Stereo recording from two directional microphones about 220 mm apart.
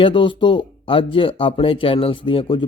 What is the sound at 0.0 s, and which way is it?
Speech, 20° left (ahead or behind).